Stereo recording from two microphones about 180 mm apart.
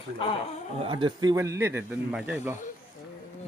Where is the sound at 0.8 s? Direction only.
25° right (ahead or behind); by 2.6 s 10° right (ahead or behind).